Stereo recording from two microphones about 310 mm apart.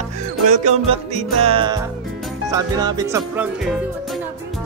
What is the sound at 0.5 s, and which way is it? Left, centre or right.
Music, right.